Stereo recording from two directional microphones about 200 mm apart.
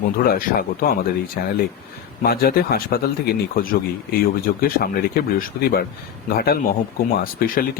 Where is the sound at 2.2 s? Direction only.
50° left (ahead or behind).